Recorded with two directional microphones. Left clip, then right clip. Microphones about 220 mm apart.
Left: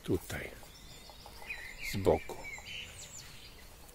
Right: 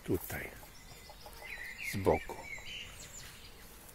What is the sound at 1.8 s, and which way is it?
Speech, 5° right (ahead or behind).